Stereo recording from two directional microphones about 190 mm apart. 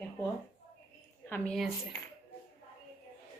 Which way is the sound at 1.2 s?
10° left (ahead or behind).